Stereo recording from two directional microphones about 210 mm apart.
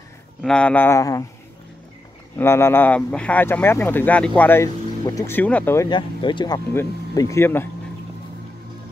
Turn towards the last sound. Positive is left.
turn(degrees=10)  # may be behind; listen again after turning